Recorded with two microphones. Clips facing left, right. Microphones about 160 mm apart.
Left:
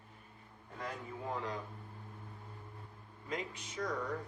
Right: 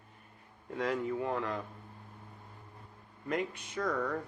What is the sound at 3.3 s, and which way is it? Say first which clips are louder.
Speech: right 7 dB; 60° right (ahead or behind).